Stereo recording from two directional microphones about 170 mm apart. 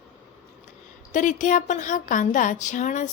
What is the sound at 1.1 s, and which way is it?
A woman's voice, 45° left (ahead or behind).